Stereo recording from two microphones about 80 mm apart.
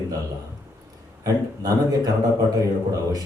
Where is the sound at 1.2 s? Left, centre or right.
Right.